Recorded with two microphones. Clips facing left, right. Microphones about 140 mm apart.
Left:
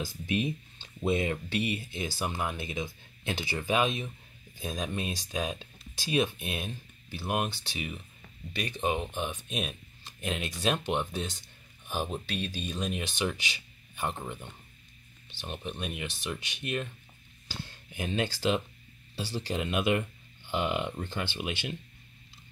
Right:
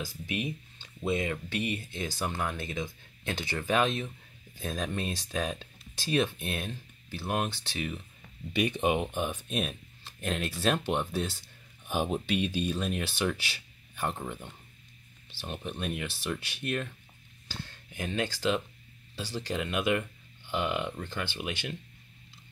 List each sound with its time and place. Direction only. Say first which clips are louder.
0.0 s speech: left 3 dB; 30° left (ahead or behind)
2.0 s speech: even; 10° left (ahead or behind)
8.8 s speech: right 3 dB; 15° right (ahead or behind); by 16.9 s centre (ahead or behind)
17.9 s speech: left 1 dB; 20° left (ahead or behind)